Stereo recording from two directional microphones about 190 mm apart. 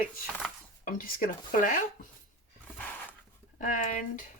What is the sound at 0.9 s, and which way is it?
Speech, 45° left (ahead or behind).